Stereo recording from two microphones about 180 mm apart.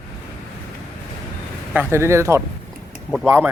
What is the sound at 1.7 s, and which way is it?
Speech, 10° right (ahead or behind).